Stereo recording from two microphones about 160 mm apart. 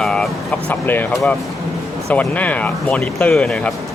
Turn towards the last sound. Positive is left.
turn(degrees=5)  # may be behind; listen again after turning